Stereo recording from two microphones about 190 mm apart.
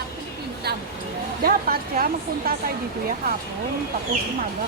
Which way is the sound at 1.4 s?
50° right (ahead or behind).